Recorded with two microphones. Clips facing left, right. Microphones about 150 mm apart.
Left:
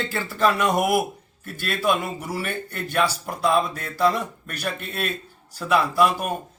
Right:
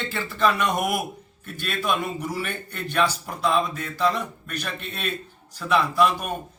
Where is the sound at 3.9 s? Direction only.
10° left (ahead or behind).